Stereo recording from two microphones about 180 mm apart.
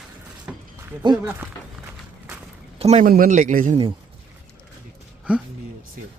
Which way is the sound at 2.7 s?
35° right (ahead or behind).